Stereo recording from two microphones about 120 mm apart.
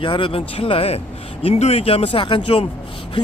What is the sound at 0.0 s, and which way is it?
Speech, 45° left (ahead or behind).